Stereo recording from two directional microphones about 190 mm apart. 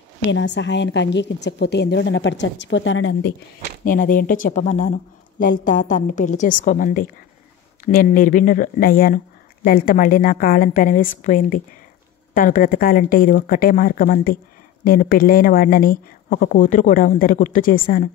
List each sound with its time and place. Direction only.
0.3 s a woman's voice: 70° left (ahead or behind)
3.8 s speech: 45° left (ahead or behind)